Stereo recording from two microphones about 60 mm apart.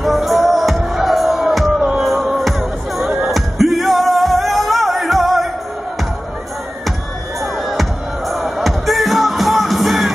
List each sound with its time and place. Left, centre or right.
0.0 s music: centre
1.8 s music: centre
2.0 s music: centre
8.3 s music: centre